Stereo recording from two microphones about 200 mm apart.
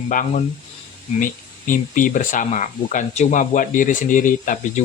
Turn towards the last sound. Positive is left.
turn(degrees=40)  # may be behind; listen again after turning